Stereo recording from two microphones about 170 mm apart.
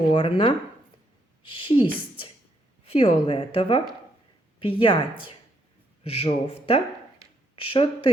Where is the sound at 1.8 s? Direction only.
30° left (ahead or behind).